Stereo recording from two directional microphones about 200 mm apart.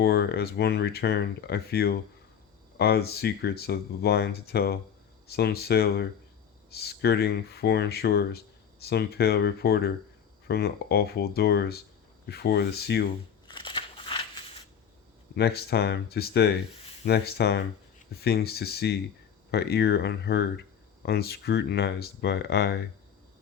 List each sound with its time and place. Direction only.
0.0 s speech: 55° left (ahead or behind)
13.5 s a sound: 25° left (ahead or behind)
15.4 s speech: 55° left (ahead or behind)